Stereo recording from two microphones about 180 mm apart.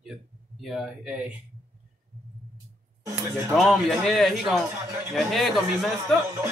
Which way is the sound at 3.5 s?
Centre (ahead or behind).